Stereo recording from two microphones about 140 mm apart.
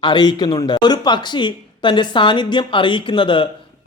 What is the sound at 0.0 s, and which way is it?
Speech, 30° left (ahead or behind).